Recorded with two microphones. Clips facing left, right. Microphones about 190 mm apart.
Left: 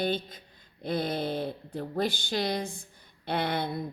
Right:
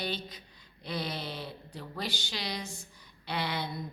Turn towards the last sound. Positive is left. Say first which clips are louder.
# left 5 dB
turn(degrees=55)  # may be behind; listen again after turning